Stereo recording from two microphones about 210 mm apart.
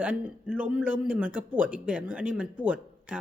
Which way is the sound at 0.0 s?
5° right (ahead or behind).